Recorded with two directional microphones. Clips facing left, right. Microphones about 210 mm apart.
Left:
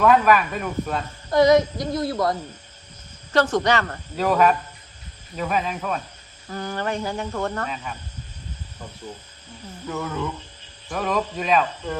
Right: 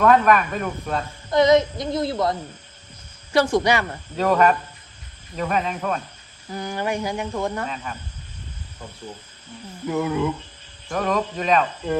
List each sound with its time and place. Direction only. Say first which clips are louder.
0.0 s speech: right 1 dB; 5° left (ahead or behind)
1.3 s speech: even; 20° right (ahead or behind)
3.3 s cricket: right 1 dB; 10° right (ahead or behind)
4.2 s speech: right 1 dB; centre (ahead or behind)
6.5 s cricket: right 1 dB; 10° right (ahead or behind)
9.8 s cricket: right 6 dB; 15° right (ahead or behind)
10.8 s speech: right 2 dB; centre (ahead or behind)